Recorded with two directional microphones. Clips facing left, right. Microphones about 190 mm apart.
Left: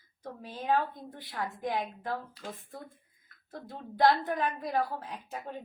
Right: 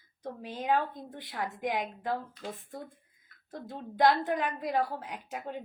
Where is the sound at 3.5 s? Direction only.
20° right (ahead or behind).